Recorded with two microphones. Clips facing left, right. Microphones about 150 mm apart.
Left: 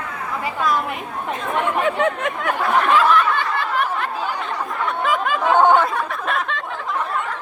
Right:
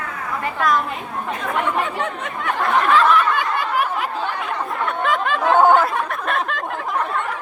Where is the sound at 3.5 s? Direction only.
10° right (ahead or behind).